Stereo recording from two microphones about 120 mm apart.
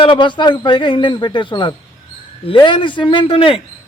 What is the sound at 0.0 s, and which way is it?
A man's voice, 45° left (ahead or behind).